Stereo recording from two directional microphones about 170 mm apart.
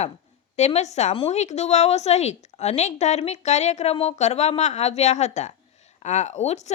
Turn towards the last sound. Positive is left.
turn(degrees=40)  # may be behind; listen again after turning